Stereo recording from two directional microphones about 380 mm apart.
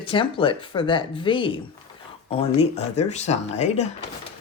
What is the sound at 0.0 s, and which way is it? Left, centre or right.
Speech, centre.